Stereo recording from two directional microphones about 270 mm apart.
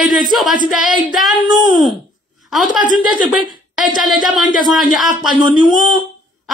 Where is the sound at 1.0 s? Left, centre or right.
Centre.